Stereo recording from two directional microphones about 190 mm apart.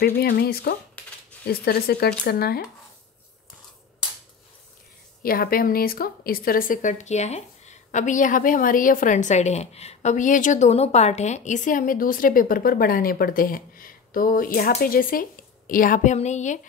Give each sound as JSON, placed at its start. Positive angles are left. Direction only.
{"t": 0.0, "sound": "a woman's voice", "side_deg": 55}
{"t": 1.0, "sound": "a sound", "side_deg": 5}
{"t": 1.5, "sound": "a woman's voice", "side_deg": 55}
{"t": 5.2, "sound": "a woman's voice", "side_deg": 50}